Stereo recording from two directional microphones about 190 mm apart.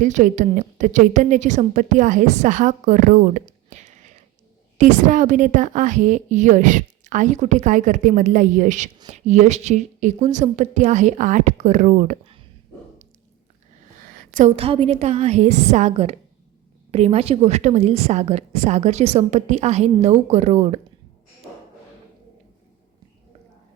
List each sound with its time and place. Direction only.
0.0 s a woman's voice: 40° right (ahead or behind)
14.2 s a sound: 45° right (ahead or behind)
14.5 s a woman's voice: 30° right (ahead or behind)